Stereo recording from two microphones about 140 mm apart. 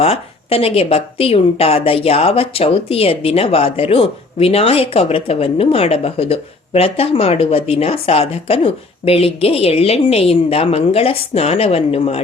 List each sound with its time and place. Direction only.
0.0 s a woman's voice: 45° left (ahead or behind)